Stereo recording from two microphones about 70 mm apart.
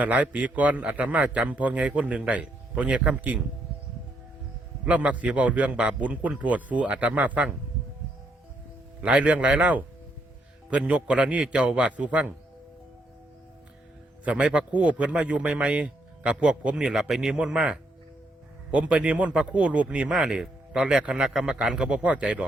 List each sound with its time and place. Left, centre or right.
0.0 s a man's voice: right
4.9 s a man's voice: right
9.0 s a man's voice: centre
14.3 s speech: centre